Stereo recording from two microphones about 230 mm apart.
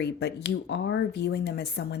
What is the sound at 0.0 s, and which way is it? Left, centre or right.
Speech, left.